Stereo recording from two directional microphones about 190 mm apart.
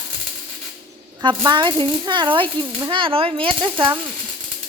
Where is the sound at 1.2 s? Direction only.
25° right (ahead or behind).